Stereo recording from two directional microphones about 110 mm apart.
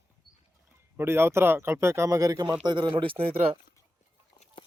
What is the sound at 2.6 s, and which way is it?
Speech, 45° right (ahead or behind).